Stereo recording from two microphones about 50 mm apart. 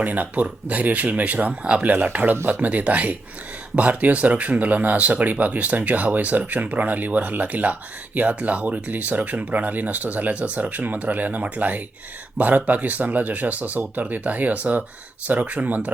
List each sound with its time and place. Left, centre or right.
0.0 s speech: right